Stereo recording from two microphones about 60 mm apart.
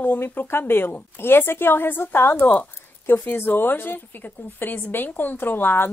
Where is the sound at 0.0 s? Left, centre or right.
Left.